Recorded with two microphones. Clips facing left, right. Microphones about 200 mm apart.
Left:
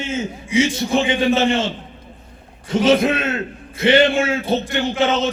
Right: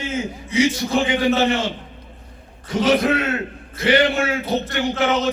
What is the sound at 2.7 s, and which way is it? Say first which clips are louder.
Speech: left 2 dB; 25° left (ahead or behind).